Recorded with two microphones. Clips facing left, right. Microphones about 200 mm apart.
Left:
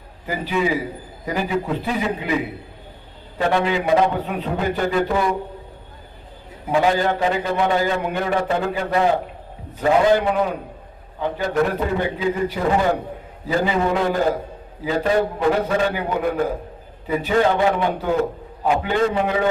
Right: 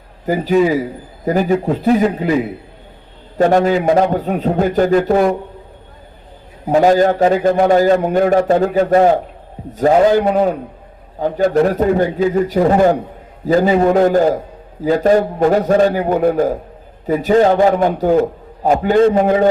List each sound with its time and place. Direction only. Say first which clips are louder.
0.3 s a man's voice: right 8 dB; 40° right (ahead or behind)
3.3 s a man's voice: right 7 dB; 45° right (ahead or behind)
6.7 s a man's voice: right 7 dB; 40° right (ahead or behind)